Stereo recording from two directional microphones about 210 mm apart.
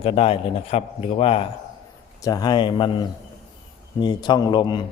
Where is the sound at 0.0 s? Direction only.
25° left (ahead or behind).